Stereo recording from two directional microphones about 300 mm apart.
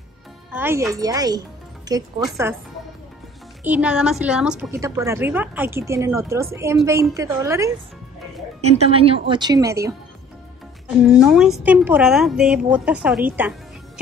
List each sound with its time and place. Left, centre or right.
0.5 s a woman's voice: centre
3.6 s a woman's voice: centre
8.5 s a woman's voice: right
11.1 s a woman's voice: centre